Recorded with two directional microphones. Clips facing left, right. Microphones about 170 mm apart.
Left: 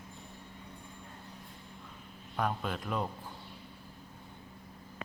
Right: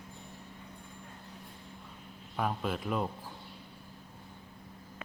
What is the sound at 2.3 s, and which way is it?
Speech, 5° right (ahead or behind).